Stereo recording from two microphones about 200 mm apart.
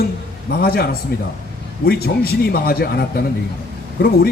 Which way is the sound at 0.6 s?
50° left (ahead or behind).